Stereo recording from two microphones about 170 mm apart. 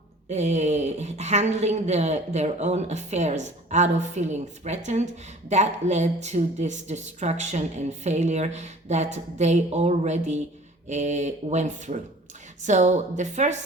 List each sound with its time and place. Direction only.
0.3 s a woman's voice: 40° right (ahead or behind)